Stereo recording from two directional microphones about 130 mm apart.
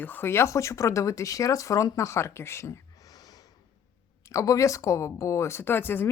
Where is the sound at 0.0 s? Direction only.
15° left (ahead or behind).